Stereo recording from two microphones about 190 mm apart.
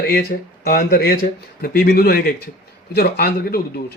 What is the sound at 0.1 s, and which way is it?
A man's voice, 55° left (ahead or behind).